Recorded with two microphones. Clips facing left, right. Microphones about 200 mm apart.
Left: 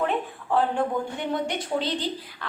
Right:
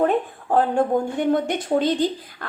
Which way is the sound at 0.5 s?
45° right (ahead or behind).